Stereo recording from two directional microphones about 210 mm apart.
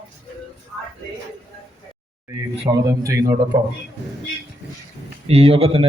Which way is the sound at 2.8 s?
15° right (ahead or behind).